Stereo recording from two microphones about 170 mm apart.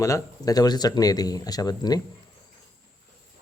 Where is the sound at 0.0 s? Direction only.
20° left (ahead or behind).